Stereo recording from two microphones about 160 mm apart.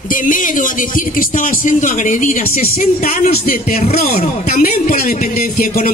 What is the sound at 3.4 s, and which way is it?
A man's voice, 65° left (ahead or behind).